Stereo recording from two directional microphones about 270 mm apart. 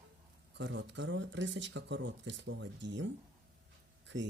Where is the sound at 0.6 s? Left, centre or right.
Right.